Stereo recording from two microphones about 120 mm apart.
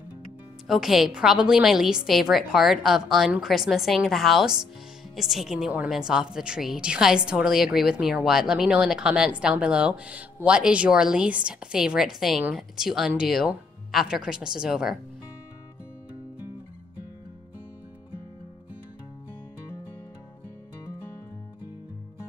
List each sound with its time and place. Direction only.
0.7 s a woman's voice: centre (ahead or behind)